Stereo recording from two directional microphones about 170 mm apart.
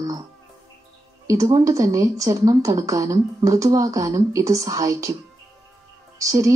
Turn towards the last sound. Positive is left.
turn(degrees=-20)  # may be behind; listen again after turning